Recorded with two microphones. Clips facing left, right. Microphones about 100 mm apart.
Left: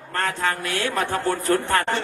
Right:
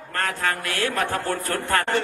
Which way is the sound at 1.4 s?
20° left (ahead or behind).